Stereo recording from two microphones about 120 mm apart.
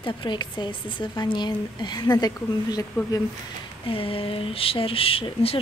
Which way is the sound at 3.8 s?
50° left (ahead or behind).